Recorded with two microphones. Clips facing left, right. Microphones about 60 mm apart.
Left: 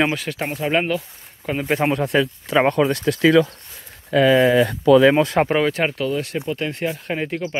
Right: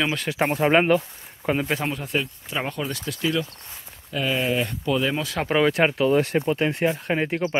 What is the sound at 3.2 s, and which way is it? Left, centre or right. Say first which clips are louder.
Speech: left 10 dB; left.